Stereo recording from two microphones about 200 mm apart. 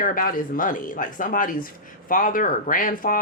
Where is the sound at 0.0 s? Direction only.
45° left (ahead or behind).